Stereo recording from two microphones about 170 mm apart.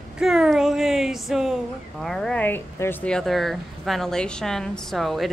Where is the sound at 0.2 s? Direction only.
Centre (ahead or behind).